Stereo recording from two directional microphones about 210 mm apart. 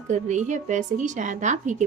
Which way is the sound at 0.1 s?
35° right (ahead or behind).